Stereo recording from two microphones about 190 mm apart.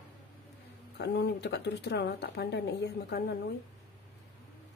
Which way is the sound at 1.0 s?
60° left (ahead or behind).